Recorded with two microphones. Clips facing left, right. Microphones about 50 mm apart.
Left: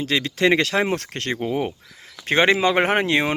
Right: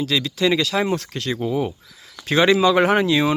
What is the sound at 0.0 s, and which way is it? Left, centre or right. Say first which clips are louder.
Speech: even; left.